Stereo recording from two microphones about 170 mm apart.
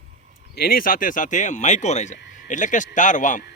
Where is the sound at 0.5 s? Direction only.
60° left (ahead or behind).